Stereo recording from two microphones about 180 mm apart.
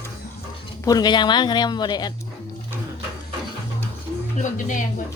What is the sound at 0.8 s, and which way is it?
Speech, 20° left (ahead or behind).